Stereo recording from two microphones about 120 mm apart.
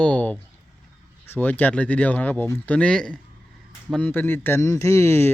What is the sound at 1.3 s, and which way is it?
Speech, 15° left (ahead or behind).